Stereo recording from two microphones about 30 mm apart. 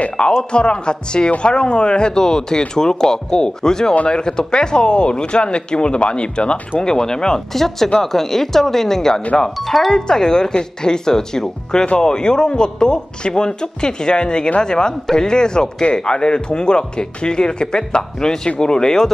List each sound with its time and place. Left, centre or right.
0.4 s a man's voice: left
6.8 s a man's voice: left
7.5 s a woman's voice: centre